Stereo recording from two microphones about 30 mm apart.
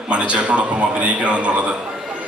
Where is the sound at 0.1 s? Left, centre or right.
Right.